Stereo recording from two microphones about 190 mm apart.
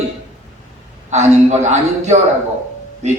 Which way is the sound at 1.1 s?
35° right (ahead or behind).